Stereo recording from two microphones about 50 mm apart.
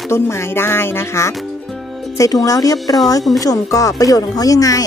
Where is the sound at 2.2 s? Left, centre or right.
Left.